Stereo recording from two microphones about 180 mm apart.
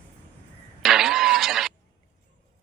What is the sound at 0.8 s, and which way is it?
Vehicle, centre (ahead or behind).